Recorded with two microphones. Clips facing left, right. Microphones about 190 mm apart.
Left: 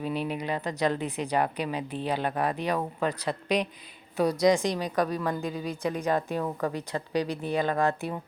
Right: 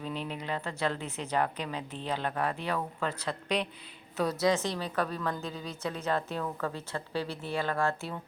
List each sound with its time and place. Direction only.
0.0 s a woman's voice: 10° left (ahead or behind)